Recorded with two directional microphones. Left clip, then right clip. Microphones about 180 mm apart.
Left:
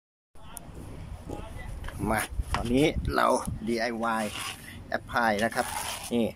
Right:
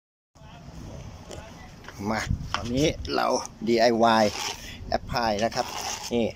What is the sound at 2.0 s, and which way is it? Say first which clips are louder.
Speech: even; 5° left (ahead or behind).